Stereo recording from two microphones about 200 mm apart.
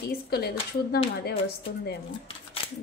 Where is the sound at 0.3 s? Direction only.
50° left (ahead or behind).